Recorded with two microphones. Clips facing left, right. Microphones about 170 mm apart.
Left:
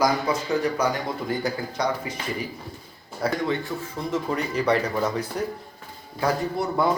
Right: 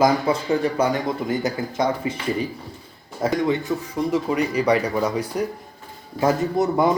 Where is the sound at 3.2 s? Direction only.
15° right (ahead or behind).